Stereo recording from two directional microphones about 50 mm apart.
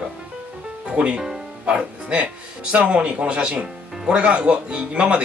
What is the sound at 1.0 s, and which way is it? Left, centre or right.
Speech, right.